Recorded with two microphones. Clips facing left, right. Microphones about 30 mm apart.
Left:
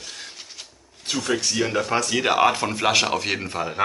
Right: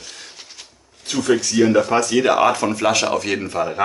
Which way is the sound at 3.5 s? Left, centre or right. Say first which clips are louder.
Right 5 dB; centre.